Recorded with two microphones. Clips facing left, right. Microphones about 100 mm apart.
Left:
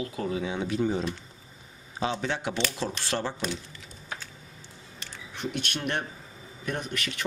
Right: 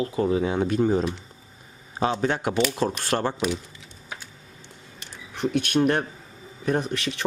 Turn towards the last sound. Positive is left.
turn(degrees=-35)  # may be behind; listen again after turning